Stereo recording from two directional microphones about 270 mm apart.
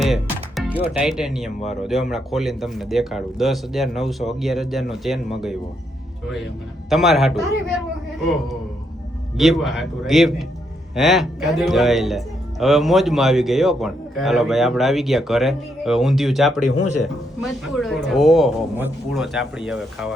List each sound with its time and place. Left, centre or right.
0.0 s music: centre
0.9 s speech: centre
6.9 s speech: centre
9.4 s speech: centre
16.6 s speech: left
17.0 s speech: centre